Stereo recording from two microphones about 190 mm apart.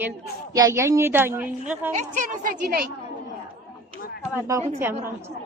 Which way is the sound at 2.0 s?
45° right (ahead or behind).